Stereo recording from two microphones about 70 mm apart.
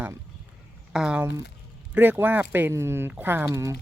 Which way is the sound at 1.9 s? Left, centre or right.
Right.